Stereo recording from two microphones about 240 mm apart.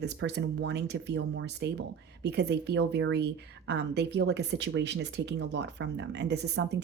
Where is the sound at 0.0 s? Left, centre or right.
Right.